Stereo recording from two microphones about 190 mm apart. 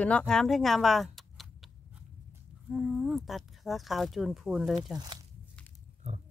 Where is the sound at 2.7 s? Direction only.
5° right (ahead or behind).